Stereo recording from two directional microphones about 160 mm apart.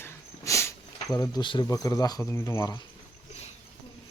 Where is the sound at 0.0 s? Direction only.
20° left (ahead or behind).